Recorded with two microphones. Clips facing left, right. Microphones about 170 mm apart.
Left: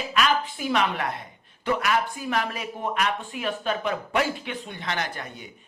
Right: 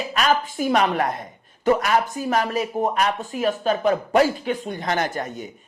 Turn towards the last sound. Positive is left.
turn(degrees=-45)  # may be behind; listen again after turning